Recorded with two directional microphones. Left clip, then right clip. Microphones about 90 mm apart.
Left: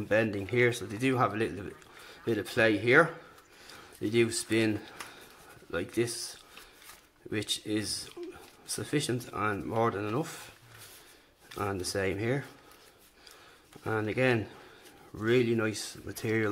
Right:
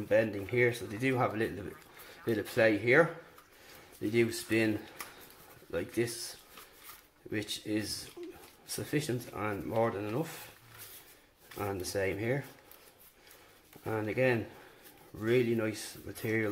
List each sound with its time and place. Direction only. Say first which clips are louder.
0.1 s speech: left 1 dB; 35° left (ahead or behind)
11.4 s speech: left 3 dB; 35° left (ahead or behind)
13.8 s speech: left 2 dB; 35° left (ahead or behind)